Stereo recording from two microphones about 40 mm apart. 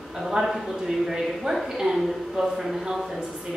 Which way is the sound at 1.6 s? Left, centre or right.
Centre.